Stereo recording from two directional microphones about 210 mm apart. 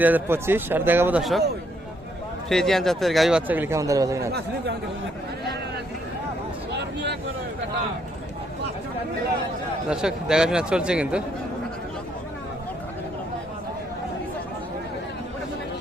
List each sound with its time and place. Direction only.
0.0 s a man's voice: 10° right (ahead or behind)
2.5 s a man's voice: centre (ahead or behind); by 4.3 s 15° right (ahead or behind)
4.3 s speech: 50° right (ahead or behind)
6.7 s vehicle: 55° right (ahead or behind)
9.9 s a man's voice: 5° right (ahead or behind)